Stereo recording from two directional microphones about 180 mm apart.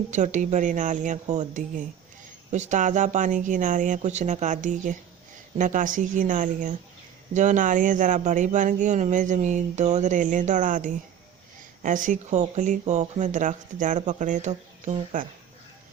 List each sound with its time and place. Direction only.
0.1 s speech: 40° right (ahead or behind)